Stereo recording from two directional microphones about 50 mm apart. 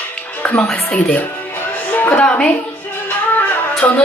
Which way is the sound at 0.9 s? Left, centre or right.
Left.